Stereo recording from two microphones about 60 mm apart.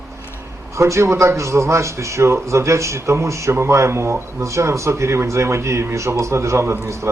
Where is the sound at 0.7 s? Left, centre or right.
Right.